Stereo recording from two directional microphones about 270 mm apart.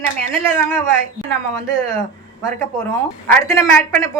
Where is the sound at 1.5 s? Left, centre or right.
Centre.